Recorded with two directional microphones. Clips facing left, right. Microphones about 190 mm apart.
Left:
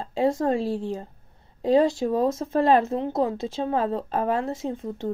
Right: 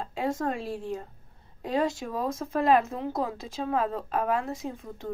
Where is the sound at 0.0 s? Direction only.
25° left (ahead or behind).